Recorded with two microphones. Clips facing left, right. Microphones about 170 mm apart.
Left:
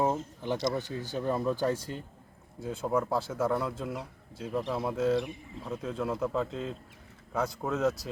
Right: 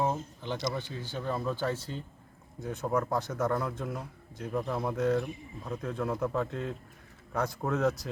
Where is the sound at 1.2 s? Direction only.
15° left (ahead or behind).